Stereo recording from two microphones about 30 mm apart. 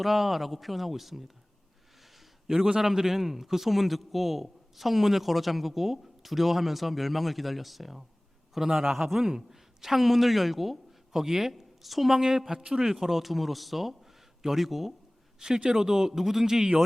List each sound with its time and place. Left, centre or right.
0.0 s a man's voice: centre
2.8 s a man's voice: centre
12.5 s speech: centre
15.4 s a man's voice: centre